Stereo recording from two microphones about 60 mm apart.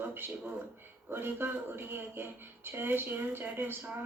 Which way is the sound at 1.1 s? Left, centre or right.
Right.